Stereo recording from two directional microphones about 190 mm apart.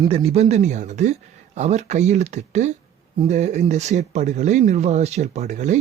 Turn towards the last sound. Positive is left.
turn(degrees=-40)  # may be behind; listen again after turning